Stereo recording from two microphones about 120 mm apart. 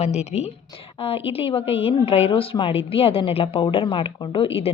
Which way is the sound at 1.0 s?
50° left (ahead or behind).